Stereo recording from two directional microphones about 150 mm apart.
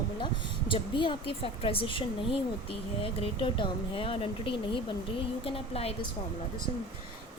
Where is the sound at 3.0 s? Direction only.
35° left (ahead or behind).